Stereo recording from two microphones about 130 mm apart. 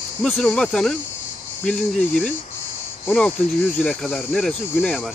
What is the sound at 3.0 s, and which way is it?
Speech, 5° left (ahead or behind).